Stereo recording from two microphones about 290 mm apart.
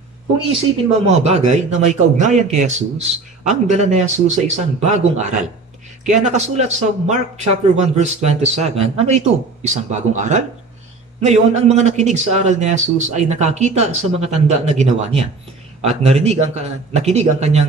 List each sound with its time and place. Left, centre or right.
1.1 s speech: right